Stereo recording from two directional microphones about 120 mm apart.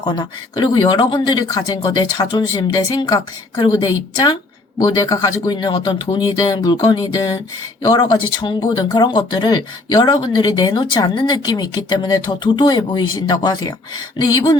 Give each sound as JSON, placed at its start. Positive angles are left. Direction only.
{"t": 0.0, "sound": "speech", "side_deg": 40}